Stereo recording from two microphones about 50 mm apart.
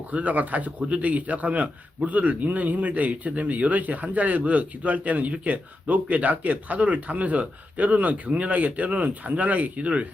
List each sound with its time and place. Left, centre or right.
0.1 s speech: right